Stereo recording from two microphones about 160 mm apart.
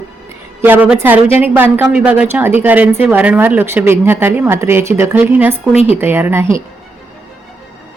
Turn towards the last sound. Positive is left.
turn(degrees=-15)  # may be behind; listen again after turning